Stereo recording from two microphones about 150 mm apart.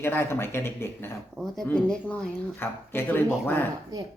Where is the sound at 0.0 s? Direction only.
15° left (ahead or behind).